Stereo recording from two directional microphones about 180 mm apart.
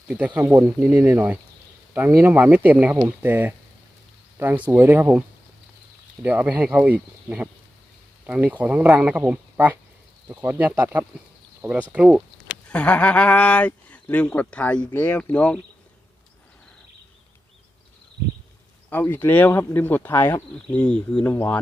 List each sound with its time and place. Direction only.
0.3 s speech: 15° right (ahead or behind)
0.8 s speech: centre (ahead or behind)
1.1 s speech: 10° right (ahead or behind)
6.2 s speech: 10° right (ahead or behind)
12.6 s speech: 5° left (ahead or behind)
18.9 s speech: 10° left (ahead or behind)